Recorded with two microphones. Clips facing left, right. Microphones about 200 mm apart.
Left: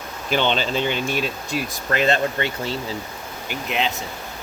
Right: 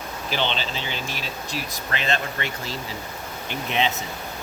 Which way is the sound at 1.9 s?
45° left (ahead or behind).